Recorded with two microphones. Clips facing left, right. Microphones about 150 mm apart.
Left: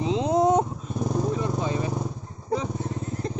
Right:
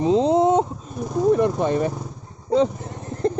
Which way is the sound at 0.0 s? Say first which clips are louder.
Right 7 dB; 40° right (ahead or behind).